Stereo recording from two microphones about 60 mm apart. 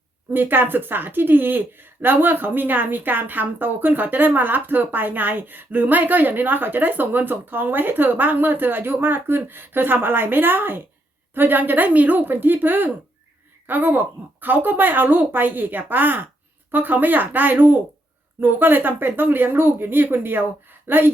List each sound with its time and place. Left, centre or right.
0.3 s speech: right